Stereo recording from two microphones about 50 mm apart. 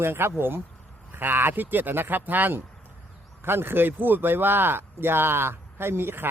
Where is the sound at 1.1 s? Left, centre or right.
Right.